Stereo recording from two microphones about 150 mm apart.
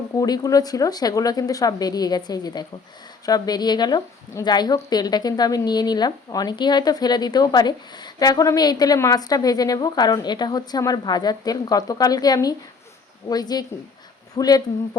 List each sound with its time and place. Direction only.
0.2 s a woman's voice: 25° left (ahead or behind)